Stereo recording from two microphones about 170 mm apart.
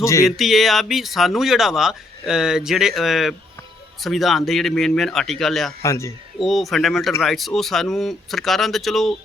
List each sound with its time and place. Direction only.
0.0 s a man's voice: 20° left (ahead or behind)
0.3 s speech: centre (ahead or behind)
5.8 s a man's voice: 15° left (ahead or behind)
6.4 s speech: centre (ahead or behind)